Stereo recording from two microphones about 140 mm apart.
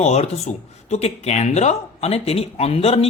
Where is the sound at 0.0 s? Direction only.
50° left (ahead or behind).